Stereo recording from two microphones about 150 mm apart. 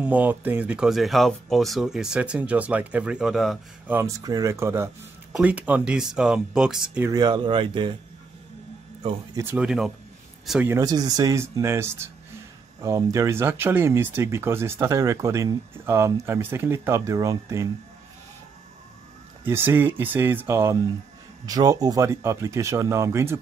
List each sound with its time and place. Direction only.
0.0 s speech: 10° right (ahead or behind)
3.8 s speech: 15° right (ahead or behind)
4.2 s speech: 25° right (ahead or behind); by 7.1 s 5° right (ahead or behind)
7.1 s speech: 30° right (ahead or behind)
9.3 s speech: 15° right (ahead or behind)
10.7 s speech: 25° right (ahead or behind)
19.4 s speech: 15° right (ahead or behind)